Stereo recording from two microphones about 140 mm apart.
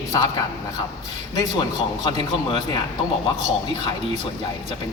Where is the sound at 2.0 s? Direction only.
30° left (ahead or behind).